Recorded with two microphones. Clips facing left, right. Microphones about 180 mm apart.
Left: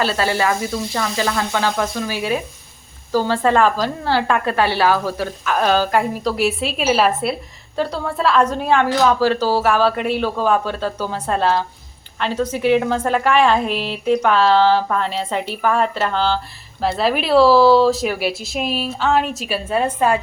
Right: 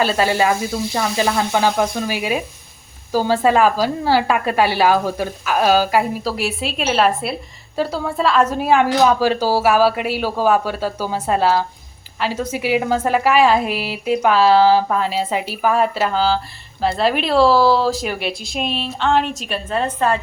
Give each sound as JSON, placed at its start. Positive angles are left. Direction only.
{"t": 0.0, "sound": "speech", "side_deg": -15}